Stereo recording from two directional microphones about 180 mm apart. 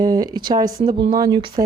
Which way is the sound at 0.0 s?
20° right (ahead or behind).